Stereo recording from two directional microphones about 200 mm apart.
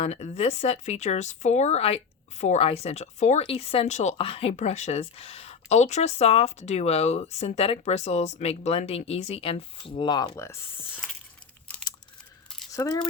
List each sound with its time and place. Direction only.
0.0 s speech: 35° left (ahead or behind); by 11.0 s 15° left (ahead or behind)
12.7 s speech: 15° left (ahead or behind)